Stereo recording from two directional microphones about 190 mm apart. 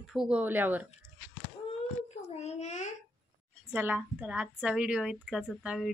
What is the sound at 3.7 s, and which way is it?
A woman's voice, 10° right (ahead or behind).